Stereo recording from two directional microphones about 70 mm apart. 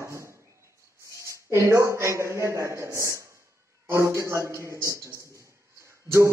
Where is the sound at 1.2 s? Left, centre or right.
Right.